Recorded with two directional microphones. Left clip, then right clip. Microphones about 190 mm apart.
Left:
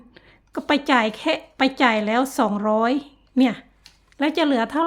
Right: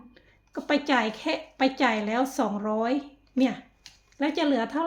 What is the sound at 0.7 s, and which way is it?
A woman's voice, 35° left (ahead or behind).